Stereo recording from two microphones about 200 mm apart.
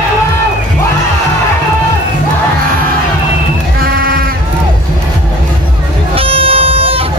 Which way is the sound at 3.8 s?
50° right (ahead or behind).